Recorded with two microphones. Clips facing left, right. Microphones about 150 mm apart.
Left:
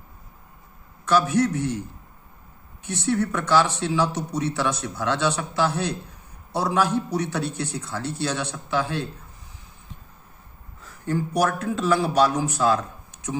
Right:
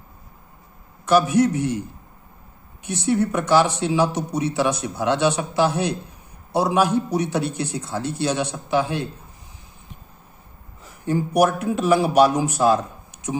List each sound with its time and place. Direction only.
1.0 s speech: 15° right (ahead or behind)
10.8 s a man's voice: 15° right (ahead or behind)